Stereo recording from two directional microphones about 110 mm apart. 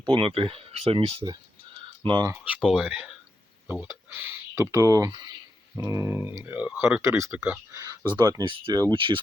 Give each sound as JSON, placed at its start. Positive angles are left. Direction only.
{"t": 0.0, "sound": "speech", "side_deg": -50}
{"t": 2.0, "sound": "speech", "side_deg": -40}
{"t": 2.4, "sound": "speech", "side_deg": -10}
{"t": 8.0, "sound": "speech", "side_deg": -40}